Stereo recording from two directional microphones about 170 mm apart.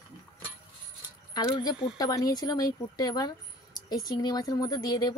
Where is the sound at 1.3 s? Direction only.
25° left (ahead or behind).